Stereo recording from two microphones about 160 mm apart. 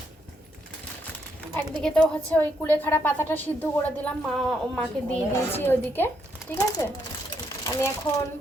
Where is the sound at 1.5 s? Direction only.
5° left (ahead or behind); by 6.9 s 20° left (ahead or behind).